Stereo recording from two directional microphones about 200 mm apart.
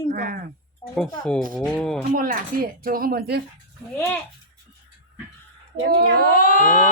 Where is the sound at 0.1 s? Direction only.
45° right (ahead or behind).